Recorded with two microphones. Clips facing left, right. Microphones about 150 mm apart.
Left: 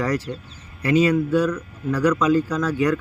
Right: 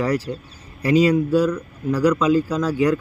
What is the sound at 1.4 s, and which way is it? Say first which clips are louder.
Speech: right 2 dB; 10° right (ahead or behind).